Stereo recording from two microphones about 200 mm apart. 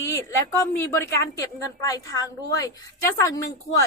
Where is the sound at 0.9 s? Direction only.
15° left (ahead or behind).